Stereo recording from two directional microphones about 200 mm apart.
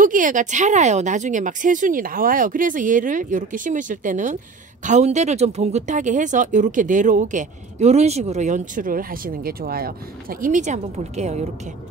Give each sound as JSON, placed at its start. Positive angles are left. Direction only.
{"t": 0.0, "sound": "speech", "side_deg": -40}